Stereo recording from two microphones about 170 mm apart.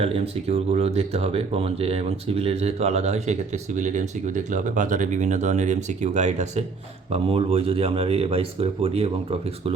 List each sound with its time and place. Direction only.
0.0 s speech: 35° right (ahead or behind)